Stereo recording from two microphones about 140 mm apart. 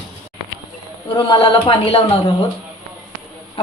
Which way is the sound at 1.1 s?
35° left (ahead or behind).